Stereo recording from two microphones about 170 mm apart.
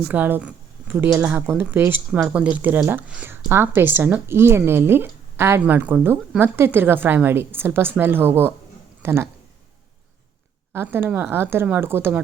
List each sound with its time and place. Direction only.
0.1 s speech: 10° right (ahead or behind)
10.7 s speech: 15° right (ahead or behind)